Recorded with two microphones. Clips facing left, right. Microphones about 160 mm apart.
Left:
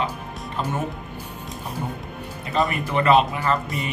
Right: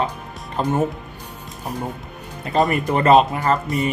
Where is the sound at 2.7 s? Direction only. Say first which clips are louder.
Right 4 dB; 40° right (ahead or behind).